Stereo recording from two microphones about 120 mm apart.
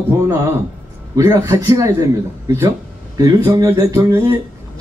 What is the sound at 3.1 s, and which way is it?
A man's voice, 30° right (ahead or behind).